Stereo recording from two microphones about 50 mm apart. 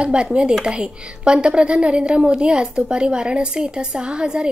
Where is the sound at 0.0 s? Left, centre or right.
Right.